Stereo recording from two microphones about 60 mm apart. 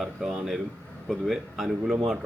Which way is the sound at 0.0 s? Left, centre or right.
Centre.